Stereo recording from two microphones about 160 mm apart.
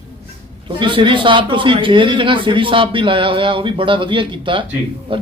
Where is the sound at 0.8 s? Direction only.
30° right (ahead or behind).